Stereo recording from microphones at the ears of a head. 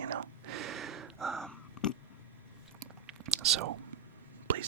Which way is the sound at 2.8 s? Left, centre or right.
Right.